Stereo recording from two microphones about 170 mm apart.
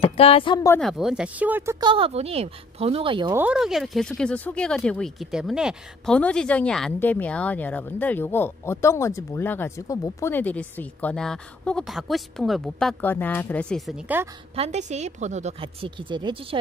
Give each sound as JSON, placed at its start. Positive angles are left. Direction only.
{"t": 0.0, "sound": "speech", "side_deg": 35}
{"t": 0.7, "sound": "speech", "side_deg": 0}
{"t": 1.8, "sound": "a woman's voice", "side_deg": -30}
{"t": 3.3, "sound": "speech", "side_deg": -5}
{"t": 14.5, "sound": "a woman's voice", "side_deg": -40}